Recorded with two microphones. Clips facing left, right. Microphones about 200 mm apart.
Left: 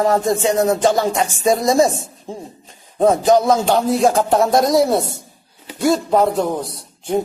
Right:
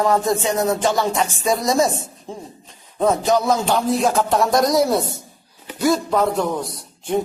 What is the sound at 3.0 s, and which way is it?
A man's voice, 45° left (ahead or behind).